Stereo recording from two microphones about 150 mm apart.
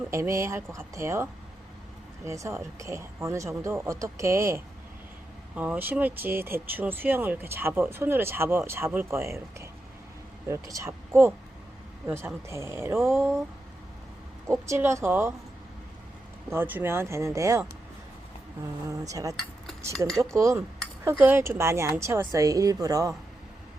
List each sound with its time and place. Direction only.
0.1 s speech: 20° right (ahead or behind)
14.4 s speech: 20° right (ahead or behind)
16.5 s speech: 15° right (ahead or behind)
18.9 s speech: 20° right (ahead or behind)
20.1 s speech: centre (ahead or behind)
20.3 s speech: 20° right (ahead or behind)